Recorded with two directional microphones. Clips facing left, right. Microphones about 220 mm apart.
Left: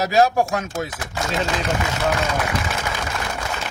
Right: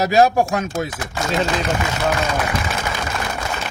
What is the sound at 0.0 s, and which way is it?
Speech, 15° right (ahead or behind).